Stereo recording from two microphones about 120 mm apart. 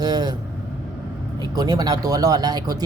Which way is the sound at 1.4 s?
30° right (ahead or behind).